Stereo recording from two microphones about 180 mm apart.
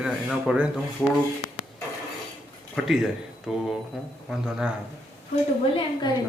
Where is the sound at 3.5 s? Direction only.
Centre (ahead or behind).